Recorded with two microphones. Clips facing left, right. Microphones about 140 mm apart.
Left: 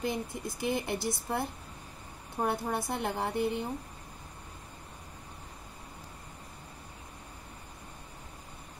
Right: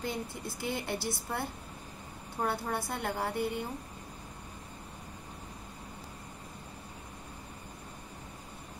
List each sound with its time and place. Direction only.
0.0 s a woman's voice: 20° left (ahead or behind)